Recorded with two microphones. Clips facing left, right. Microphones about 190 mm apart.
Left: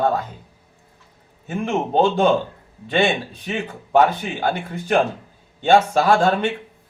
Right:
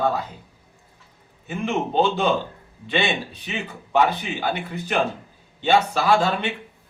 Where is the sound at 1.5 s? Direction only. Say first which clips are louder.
Left 2 dB; 50° left (ahead or behind).